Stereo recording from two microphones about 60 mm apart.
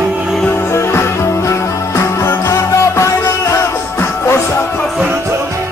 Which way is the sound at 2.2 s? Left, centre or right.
Left.